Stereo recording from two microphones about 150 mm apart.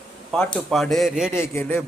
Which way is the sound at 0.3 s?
5° left (ahead or behind).